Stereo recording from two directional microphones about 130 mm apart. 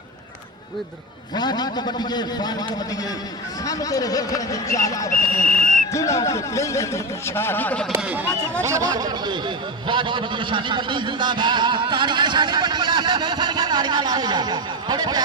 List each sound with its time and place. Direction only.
1.4 s a man's voice: 35° left (ahead or behind)
3.7 s speech: 25° left (ahead or behind)
5.4 s speech: 90° left
5.9 s speech: 25° left (ahead or behind)
8.0 s speech: 15° right (ahead or behind)
8.6 s a man's voice: 25° right (ahead or behind)